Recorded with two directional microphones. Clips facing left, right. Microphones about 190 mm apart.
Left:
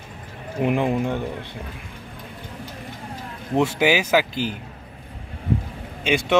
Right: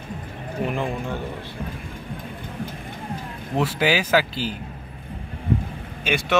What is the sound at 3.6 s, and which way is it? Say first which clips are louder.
Speech: left 2 dB; 15° left (ahead or behind).